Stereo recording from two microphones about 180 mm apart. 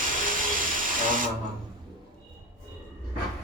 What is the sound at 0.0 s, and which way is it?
Hiss, 50° right (ahead or behind).